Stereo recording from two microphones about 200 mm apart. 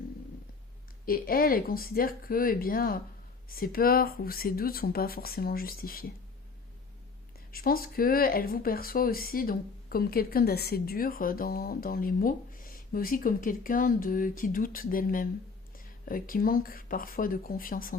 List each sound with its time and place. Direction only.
1.0 s speech: 45° left (ahead or behind)
7.5 s speech: 45° left (ahead or behind)